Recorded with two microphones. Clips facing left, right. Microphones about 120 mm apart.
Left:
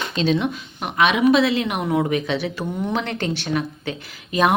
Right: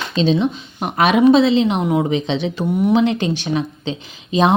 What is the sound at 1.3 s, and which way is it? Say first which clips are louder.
A woman's voice: right 5 dB; 25° right (ahead or behind).